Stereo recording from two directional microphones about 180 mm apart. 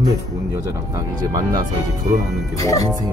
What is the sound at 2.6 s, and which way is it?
Speech, 20° left (ahead or behind).